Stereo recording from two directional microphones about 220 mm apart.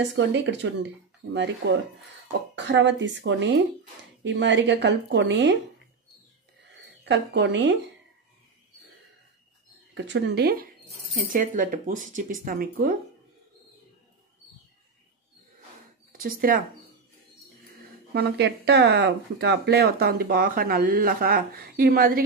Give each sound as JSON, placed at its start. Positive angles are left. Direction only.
{"t": 0.0, "sound": "speech", "side_deg": -55}
{"t": 6.8, "sound": "a woman's voice", "side_deg": -55}
{"t": 9.9, "sound": "speech", "side_deg": -55}
{"t": 16.1, "sound": "speech", "side_deg": -40}
{"t": 18.1, "sound": "speech", "side_deg": -50}